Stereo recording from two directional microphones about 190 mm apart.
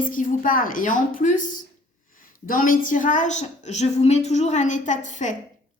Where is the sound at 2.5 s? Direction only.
45° left (ahead or behind).